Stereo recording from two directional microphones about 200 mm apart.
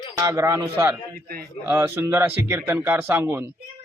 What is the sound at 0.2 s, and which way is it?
A man's voice, 15° right (ahead or behind).